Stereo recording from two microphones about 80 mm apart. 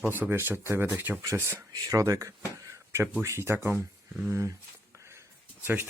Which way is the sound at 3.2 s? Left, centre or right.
Right.